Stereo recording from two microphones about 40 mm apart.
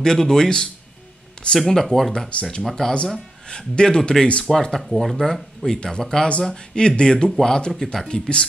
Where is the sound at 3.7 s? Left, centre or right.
Left.